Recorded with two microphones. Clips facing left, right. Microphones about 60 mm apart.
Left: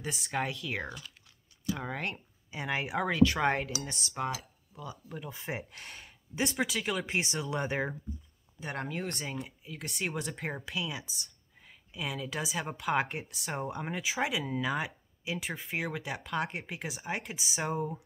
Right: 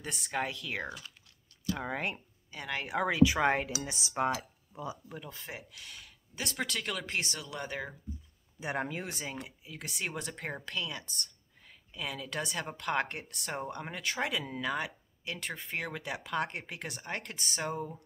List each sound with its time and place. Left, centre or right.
0.0 s speech: centre
2.5 s speech: centre
2.9 s speech: centre
3.8 s cutlery: centre
4.4 s a sound: centre
5.3 s speech: left
6.4 s speech: centre; by 7.9 s left
8.5 s speech: centre